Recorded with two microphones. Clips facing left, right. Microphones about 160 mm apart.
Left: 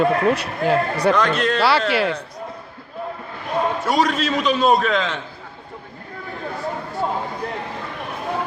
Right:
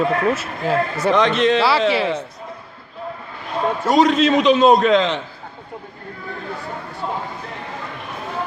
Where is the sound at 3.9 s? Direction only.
Centre (ahead or behind).